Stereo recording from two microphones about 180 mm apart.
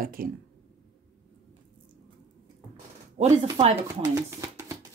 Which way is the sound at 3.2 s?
35° right (ahead or behind).